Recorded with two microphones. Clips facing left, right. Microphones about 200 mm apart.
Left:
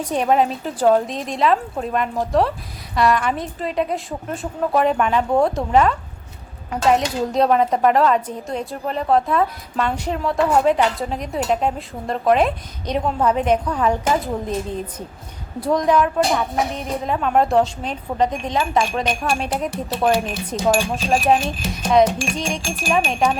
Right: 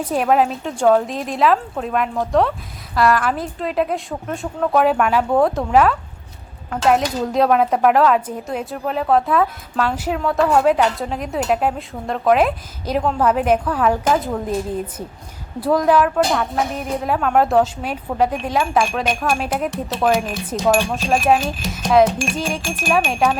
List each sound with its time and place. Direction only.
0.1 s a woman's voice: 5° right (ahead or behind)